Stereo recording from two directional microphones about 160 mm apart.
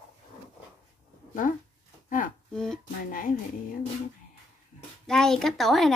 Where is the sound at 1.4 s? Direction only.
50° left (ahead or behind).